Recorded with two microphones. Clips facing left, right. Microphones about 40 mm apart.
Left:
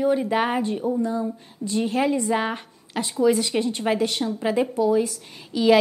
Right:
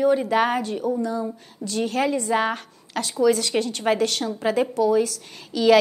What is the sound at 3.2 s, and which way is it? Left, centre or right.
Speech, centre.